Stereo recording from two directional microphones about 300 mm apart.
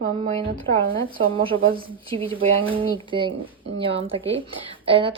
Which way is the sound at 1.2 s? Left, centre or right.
Centre.